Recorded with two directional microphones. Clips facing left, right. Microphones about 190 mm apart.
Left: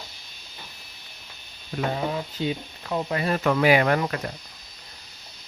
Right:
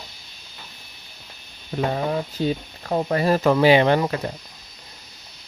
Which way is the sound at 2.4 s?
40° right (ahead or behind).